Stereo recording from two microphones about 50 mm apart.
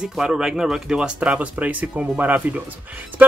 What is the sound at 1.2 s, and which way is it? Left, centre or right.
Speech, right.